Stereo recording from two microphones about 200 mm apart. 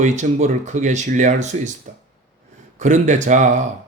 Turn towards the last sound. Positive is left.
turn(degrees=-35)  # may be behind; listen again after turning